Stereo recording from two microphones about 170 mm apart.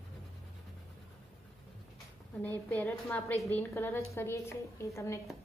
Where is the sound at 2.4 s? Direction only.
10° left (ahead or behind).